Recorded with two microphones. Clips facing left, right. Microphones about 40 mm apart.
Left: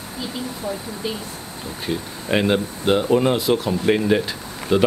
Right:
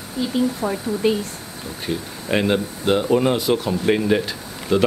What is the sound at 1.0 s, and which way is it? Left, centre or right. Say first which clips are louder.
Speech: right 9 dB; right.